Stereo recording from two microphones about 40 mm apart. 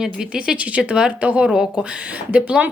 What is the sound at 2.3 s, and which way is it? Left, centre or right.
Speech, right.